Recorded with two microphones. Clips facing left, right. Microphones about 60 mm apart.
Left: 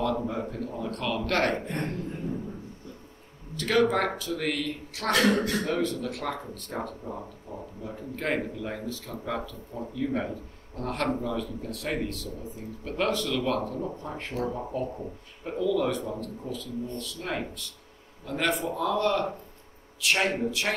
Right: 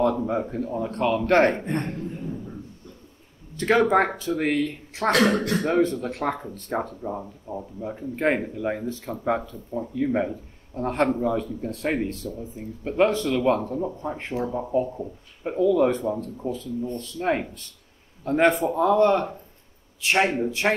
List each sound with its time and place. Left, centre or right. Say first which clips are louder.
0.0 s speech: right 6 dB; right
3.5 s speech: right 5 dB; right